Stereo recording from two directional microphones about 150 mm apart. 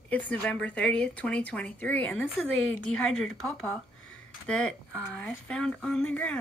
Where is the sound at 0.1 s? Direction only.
10° left (ahead or behind).